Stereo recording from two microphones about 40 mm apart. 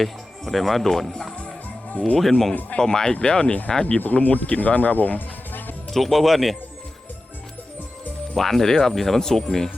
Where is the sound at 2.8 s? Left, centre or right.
Centre.